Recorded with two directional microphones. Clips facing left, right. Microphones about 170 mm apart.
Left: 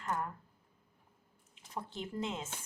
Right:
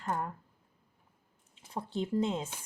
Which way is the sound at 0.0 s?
30° right (ahead or behind).